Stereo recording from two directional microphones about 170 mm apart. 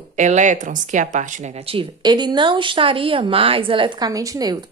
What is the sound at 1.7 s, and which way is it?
A woman's voice, 30° right (ahead or behind).